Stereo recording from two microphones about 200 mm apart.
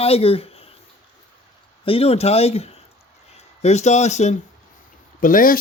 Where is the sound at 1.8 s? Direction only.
30° left (ahead or behind).